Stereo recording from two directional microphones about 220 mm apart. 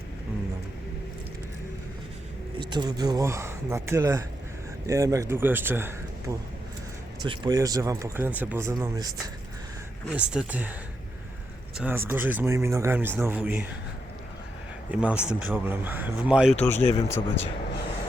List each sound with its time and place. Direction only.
2.6 s speech: 20° right (ahead or behind)
10.2 s speech: 5° right (ahead or behind)
11.8 s speech: 10° right (ahead or behind)
14.8 s speech: 5° right (ahead or behind)
16.6 s speech: 30° left (ahead or behind)
16.9 s speech: 10° left (ahead or behind)